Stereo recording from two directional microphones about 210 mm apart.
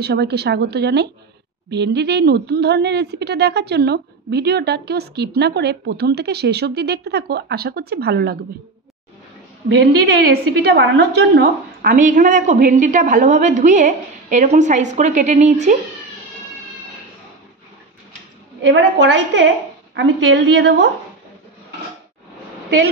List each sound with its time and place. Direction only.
0.0 s speech: 50° right (ahead or behind)
9.8 s a woman's voice: 50° right (ahead or behind); by 15.8 s 35° right (ahead or behind)
18.6 s a woman's voice: 55° right (ahead or behind)